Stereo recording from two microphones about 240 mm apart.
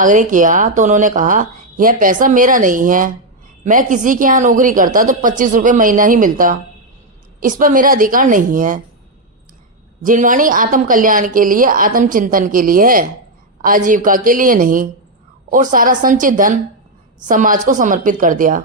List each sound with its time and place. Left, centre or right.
0.0 s speech: right
10.0 s speech: right